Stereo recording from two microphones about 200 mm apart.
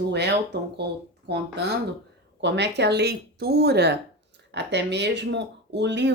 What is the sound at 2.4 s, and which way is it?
A woman's voice, 60° right (ahead or behind).